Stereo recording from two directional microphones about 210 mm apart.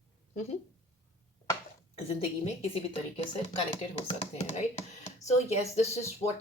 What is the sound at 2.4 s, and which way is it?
A woman's voice, 30° left (ahead or behind).